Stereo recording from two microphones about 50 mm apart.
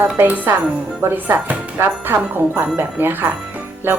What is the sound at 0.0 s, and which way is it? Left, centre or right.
Speech, right.